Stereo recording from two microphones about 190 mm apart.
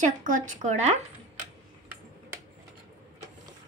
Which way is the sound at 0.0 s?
40° right (ahead or behind).